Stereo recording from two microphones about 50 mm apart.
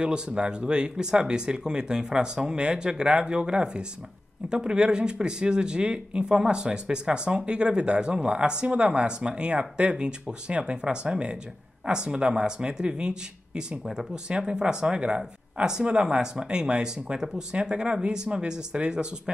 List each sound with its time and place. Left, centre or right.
0.0 s speech: centre